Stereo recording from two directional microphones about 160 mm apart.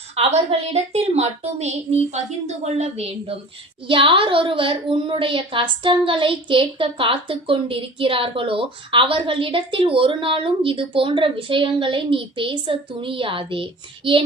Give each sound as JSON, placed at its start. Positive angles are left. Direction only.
{"t": 0.2, "sound": "a woman's voice", "side_deg": -40}